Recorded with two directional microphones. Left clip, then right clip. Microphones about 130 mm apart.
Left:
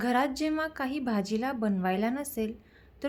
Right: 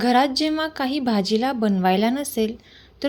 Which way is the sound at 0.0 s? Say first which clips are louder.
Right 9 dB; 20° right (ahead or behind).